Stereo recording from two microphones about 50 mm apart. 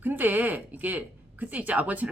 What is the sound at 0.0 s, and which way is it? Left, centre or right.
Speech, right.